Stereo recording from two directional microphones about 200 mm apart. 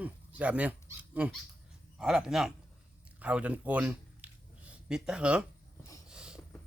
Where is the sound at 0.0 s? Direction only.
5° right (ahead or behind).